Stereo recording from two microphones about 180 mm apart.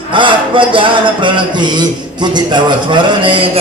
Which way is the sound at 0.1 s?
25° right (ahead or behind).